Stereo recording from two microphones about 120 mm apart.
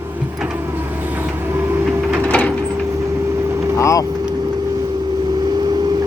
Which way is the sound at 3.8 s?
25° left (ahead or behind).